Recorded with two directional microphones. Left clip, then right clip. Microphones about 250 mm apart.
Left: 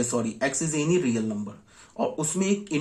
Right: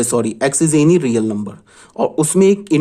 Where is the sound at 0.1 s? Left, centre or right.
Right.